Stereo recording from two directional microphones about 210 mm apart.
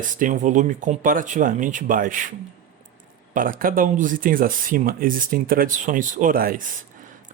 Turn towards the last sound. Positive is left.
turn(degrees=-45)  # may be behind; listen again after turning